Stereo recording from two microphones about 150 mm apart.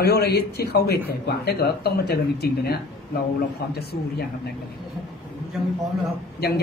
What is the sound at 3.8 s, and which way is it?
Speech, 90° left.